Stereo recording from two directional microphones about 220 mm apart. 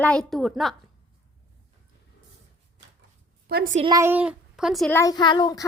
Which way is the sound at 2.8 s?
55° right (ahead or behind).